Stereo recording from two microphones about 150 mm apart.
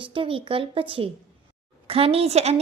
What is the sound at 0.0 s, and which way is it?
Speech, 35° right (ahead or behind).